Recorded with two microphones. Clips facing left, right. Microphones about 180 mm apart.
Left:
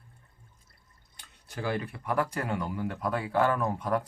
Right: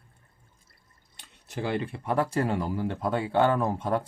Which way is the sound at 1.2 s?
25° right (ahead or behind).